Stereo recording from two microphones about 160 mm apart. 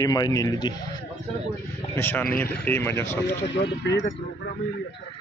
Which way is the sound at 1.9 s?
10° left (ahead or behind).